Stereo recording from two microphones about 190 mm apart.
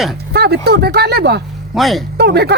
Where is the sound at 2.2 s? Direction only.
60° right (ahead or behind).